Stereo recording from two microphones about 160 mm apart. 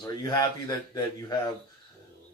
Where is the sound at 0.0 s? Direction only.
25° left (ahead or behind).